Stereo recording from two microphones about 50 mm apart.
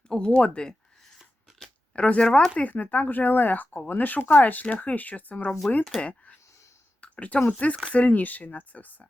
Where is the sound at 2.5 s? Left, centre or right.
Left.